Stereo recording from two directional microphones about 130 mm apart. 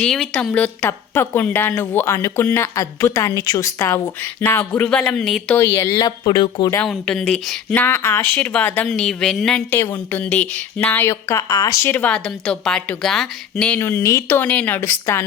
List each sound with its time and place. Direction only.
0.0 s a woman's voice: 5° left (ahead or behind)
5.5 s speech: 20° left (ahead or behind); by 6.7 s 35° left (ahead or behind)
6.8 s speech: 5° left (ahead or behind)
7.7 s a woman's voice: 15° left (ahead or behind)
9.7 s a woman's voice: 15° left (ahead or behind)
13.7 s a woman's voice: 20° left (ahead or behind)